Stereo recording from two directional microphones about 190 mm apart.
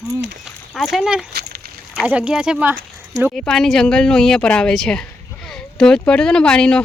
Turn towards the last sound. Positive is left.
turn(degrees=5)  # may be behind; listen again after turning